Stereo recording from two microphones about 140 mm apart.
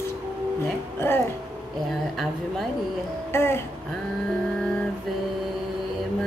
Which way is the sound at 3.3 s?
15° left (ahead or behind).